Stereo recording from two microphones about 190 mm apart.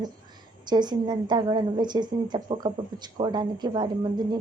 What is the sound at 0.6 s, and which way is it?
Speech, 20° right (ahead or behind).